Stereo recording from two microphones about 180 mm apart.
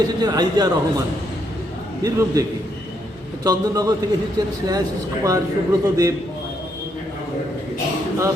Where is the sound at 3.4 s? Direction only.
20° right (ahead or behind).